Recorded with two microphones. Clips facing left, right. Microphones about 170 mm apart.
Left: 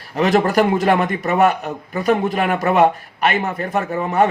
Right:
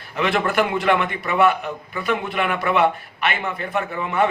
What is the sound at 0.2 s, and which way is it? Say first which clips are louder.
A man's voice: left 5 dB; 40° left (ahead or behind).